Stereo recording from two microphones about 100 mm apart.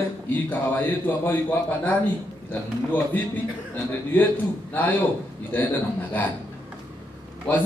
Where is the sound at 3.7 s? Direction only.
15° left (ahead or behind).